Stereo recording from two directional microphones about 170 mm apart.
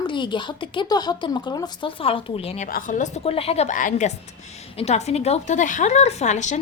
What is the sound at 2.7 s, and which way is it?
A woman's voice, 55° left (ahead or behind).